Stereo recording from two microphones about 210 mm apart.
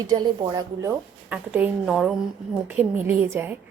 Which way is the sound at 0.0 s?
20° right (ahead or behind).